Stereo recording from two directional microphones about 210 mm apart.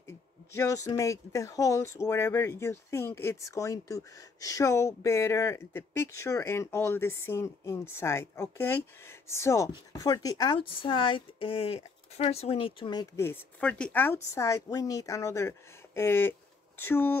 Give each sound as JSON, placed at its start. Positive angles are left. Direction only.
{"t": 0.5, "sound": "speech", "side_deg": 15}